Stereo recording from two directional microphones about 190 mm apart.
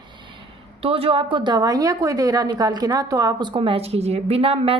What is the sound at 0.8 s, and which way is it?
A woman's voice, 30° right (ahead or behind).